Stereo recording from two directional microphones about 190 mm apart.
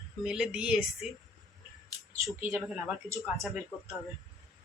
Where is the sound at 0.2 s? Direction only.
5° right (ahead or behind).